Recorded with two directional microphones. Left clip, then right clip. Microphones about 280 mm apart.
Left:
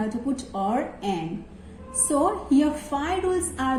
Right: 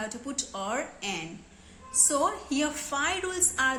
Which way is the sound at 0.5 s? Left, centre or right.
Right.